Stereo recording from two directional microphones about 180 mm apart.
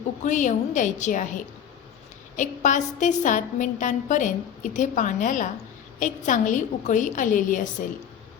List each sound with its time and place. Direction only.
0.3 s a woman's voice: 45° left (ahead or behind)
2.3 s a woman's voice: 45° left (ahead or behind)